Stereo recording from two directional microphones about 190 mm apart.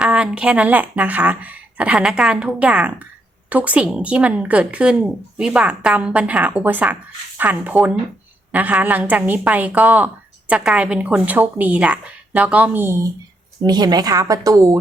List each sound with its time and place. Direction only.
0.0 s a woman's voice: 5° right (ahead or behind)